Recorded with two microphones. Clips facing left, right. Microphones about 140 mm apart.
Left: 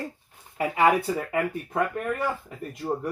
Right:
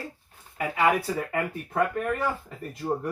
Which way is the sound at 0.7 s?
20° left (ahead or behind).